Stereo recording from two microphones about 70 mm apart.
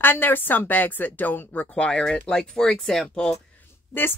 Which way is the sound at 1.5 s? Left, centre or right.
Centre.